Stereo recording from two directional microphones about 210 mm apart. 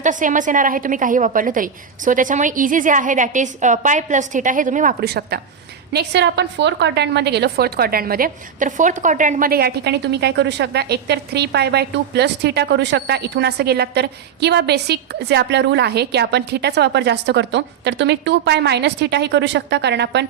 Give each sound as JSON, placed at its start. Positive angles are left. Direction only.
{"t": 0.0, "sound": "a woman's voice", "side_deg": -40}